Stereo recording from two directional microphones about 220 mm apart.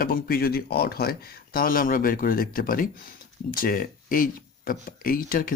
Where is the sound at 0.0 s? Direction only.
40° left (ahead or behind).